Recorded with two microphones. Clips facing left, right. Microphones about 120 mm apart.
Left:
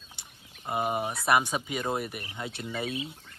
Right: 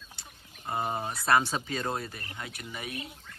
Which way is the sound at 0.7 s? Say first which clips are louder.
Left 3 dB; 15° left (ahead or behind).